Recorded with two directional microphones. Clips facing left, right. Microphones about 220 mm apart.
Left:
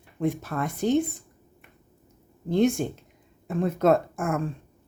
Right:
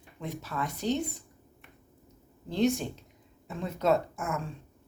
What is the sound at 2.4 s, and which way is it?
Speech, 50° left (ahead or behind).